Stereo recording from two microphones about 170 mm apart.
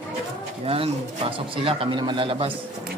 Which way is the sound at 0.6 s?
35° right (ahead or behind).